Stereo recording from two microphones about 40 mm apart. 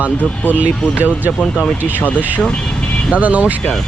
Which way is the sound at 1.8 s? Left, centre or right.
Right.